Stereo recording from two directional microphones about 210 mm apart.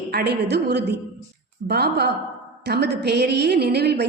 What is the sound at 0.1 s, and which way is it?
A woman's voice, 50° right (ahead or behind).